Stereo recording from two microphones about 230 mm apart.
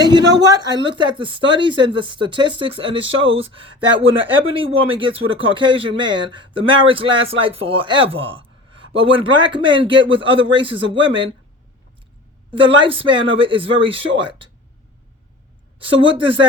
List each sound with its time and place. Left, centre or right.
0.4 s a man's voice: centre
12.5 s a man's voice: right
15.8 s a man's voice: right